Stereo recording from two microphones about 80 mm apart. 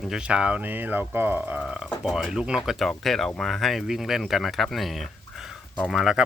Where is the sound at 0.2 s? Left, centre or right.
Centre.